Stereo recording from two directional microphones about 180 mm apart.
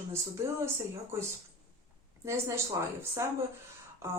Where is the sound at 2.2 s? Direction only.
15° right (ahead or behind).